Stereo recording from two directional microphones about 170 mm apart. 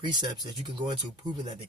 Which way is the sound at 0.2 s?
25° right (ahead or behind).